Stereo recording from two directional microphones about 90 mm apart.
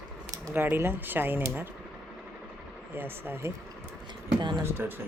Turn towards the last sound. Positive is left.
turn(degrees=-25)  # may be behind; listen again after turning